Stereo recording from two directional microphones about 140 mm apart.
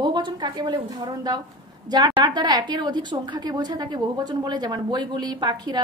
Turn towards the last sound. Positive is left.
turn(degrees=-30)  # may be behind; listen again after turning